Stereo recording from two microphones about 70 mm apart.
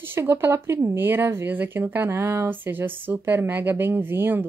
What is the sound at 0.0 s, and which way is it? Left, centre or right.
Speech, right.